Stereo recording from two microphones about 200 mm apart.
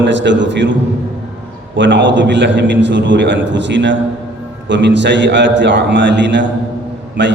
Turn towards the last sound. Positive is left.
turn(degrees=-60)  # may be behind; listen again after turning